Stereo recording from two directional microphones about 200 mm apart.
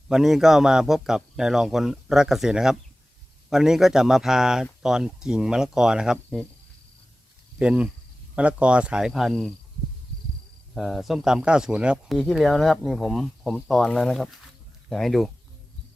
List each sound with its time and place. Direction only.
0.1 s speech: centre (ahead or behind)
7.6 s speech: 5° right (ahead or behind)
10.8 s speech: centre (ahead or behind)